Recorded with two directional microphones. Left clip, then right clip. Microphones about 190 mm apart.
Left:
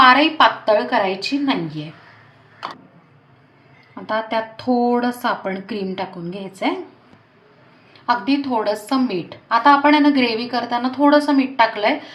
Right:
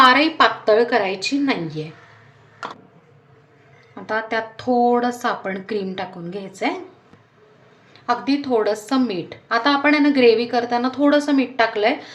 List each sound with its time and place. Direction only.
0.0 s a woman's voice: 30° right (ahead or behind)
4.0 s a woman's voice: 20° right (ahead or behind)
8.0 s a woman's voice: 25° right (ahead or behind)